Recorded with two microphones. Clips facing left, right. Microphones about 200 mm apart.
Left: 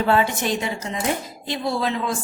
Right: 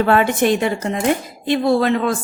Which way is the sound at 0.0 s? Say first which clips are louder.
Right 5 dB; 60° right (ahead or behind).